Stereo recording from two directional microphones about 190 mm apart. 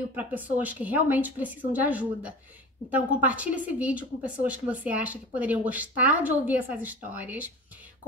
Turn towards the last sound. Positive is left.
turn(degrees=-10)  # may be behind; listen again after turning